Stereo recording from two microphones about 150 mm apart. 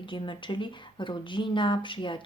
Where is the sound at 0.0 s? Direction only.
35° left (ahead or behind).